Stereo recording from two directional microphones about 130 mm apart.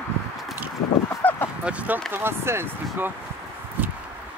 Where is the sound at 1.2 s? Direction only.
15° left (ahead or behind).